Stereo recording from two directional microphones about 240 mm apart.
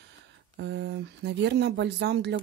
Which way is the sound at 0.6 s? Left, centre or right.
Right.